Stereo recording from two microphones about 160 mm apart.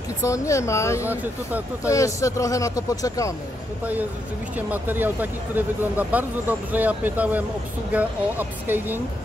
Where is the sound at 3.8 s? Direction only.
10° right (ahead or behind).